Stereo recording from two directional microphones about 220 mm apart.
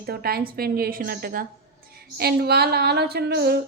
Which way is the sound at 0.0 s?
45° right (ahead or behind).